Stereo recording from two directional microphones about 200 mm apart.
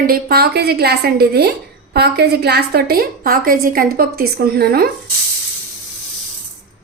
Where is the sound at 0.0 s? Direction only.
50° right (ahead or behind).